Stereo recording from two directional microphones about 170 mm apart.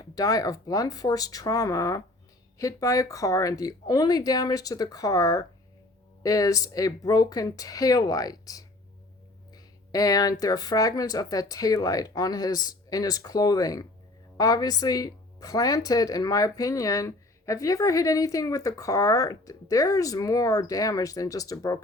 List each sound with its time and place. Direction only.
0.0 s speech: 20° left (ahead or behind)
9.9 s speech: 20° left (ahead or behind)